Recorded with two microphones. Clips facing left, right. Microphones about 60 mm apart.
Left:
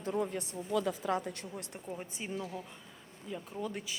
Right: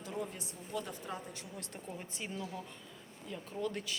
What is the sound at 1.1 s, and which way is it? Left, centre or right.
Speech, left.